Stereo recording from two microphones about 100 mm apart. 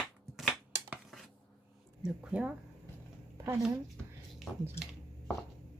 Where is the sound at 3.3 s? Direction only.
30° right (ahead or behind).